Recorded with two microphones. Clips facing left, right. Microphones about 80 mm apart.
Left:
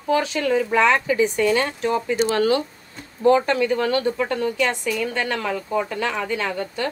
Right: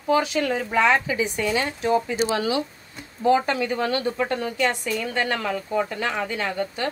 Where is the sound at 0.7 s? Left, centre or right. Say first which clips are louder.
Even; left.